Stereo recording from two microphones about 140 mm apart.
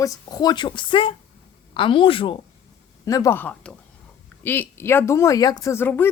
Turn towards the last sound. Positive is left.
turn(degrees=15)  # may be behind; listen again after turning